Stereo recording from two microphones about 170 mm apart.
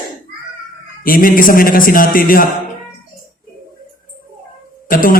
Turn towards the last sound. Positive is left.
turn(degrees=55)  # may be behind; listen again after turning